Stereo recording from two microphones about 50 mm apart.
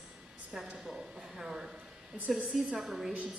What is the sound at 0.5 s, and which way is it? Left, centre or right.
A woman's voice, centre.